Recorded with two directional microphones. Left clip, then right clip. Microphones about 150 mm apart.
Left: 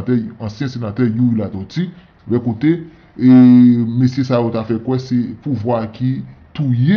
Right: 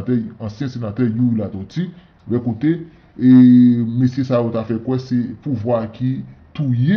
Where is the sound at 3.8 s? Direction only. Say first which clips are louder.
Left 2 dB; 20° left (ahead or behind).